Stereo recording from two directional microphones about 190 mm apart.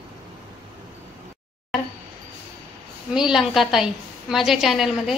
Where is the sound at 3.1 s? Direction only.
5° right (ahead or behind).